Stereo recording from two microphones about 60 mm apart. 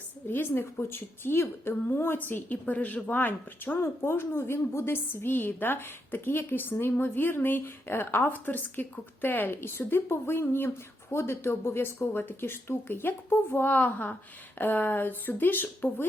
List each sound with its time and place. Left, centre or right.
0.3 s a woman's voice: left